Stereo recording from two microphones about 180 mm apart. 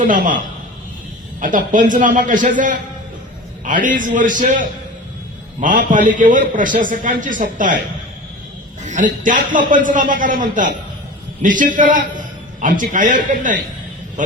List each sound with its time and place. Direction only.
1.4 s a man's voice: 45° right (ahead or behind)
8.8 s a man's voice: 45° right (ahead or behind)